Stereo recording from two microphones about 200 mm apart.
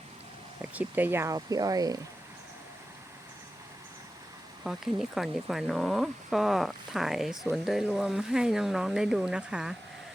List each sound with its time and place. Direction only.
0.6 s speech: 5° right (ahead or behind)
4.6 s speech: centre (ahead or behind)